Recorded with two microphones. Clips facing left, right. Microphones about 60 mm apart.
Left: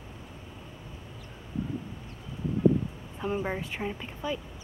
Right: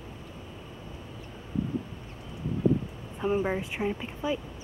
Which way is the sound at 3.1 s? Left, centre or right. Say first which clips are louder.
Right 4 dB; centre.